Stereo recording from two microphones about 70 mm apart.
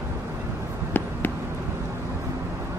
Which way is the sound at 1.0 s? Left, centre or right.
Left.